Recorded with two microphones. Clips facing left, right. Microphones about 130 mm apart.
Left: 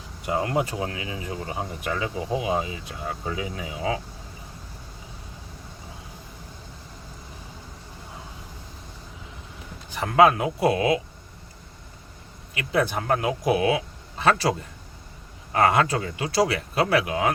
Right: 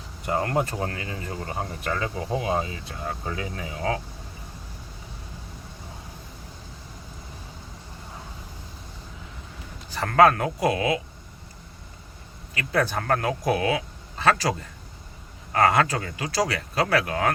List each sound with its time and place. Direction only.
0.3 s speech: 10° left (ahead or behind)
9.9 s a man's voice: 15° left (ahead or behind)
10.6 s speech: 30° left (ahead or behind)
12.5 s speech: 15° left (ahead or behind)
17.1 s speech: 15° left (ahead or behind)